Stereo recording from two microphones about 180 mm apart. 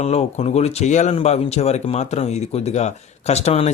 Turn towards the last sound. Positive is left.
turn(degrees=35)  # may be behind; listen again after turning